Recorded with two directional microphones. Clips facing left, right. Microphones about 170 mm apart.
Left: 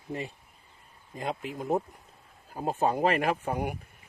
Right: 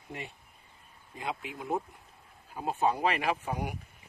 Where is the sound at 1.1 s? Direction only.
40° left (ahead or behind).